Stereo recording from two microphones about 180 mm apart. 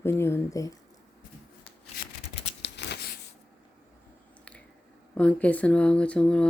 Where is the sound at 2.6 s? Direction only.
70° left (ahead or behind).